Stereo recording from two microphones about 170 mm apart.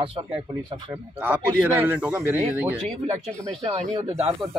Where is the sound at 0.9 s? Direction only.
10° right (ahead or behind).